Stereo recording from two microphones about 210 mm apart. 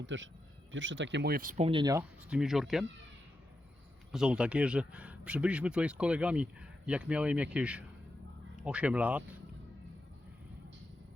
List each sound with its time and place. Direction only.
0.0 s speech: 60° right (ahead or behind); by 2.0 s 20° right (ahead or behind)
2.3 s speech: centre (ahead or behind)
4.1 s speech: 5° right (ahead or behind)